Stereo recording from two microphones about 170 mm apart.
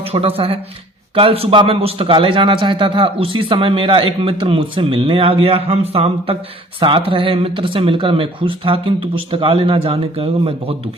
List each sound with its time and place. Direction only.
0.0 s a man's voice: 35° right (ahead or behind)